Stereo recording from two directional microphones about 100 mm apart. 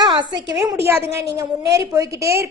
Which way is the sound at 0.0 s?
45° right (ahead or behind).